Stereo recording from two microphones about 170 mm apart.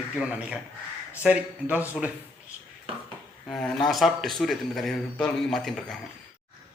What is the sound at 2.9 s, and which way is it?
Dishes, 35° right (ahead or behind).